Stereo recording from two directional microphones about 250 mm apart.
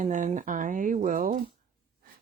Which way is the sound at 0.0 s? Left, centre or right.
Right.